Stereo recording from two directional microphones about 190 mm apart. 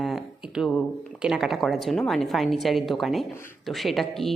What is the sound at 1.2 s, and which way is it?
A woman's voice, 5° right (ahead or behind).